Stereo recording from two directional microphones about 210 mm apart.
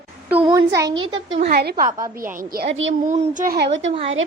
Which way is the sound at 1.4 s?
50° right (ahead or behind).